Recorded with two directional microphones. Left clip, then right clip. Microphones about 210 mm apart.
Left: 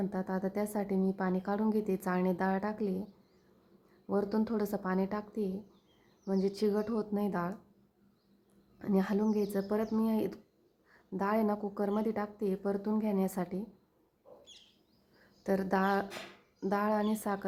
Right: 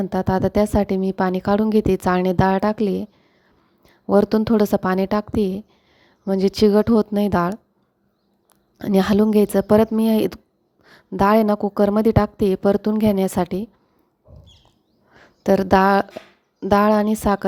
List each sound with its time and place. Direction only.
0.0 s a woman's voice: 40° right (ahead or behind)
8.8 s a woman's voice: 45° right (ahead or behind)
15.4 s a woman's voice: 45° right (ahead or behind)